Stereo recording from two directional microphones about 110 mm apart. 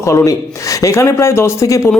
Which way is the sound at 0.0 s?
25° left (ahead or behind).